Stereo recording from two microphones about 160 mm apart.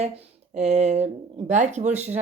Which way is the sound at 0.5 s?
45° right (ahead or behind).